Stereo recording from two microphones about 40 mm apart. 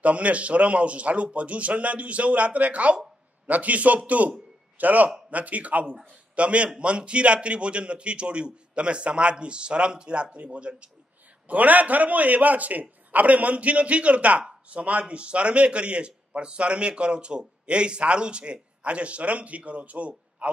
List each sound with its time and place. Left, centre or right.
0.0 s a man's voice: right
11.4 s a man's voice: right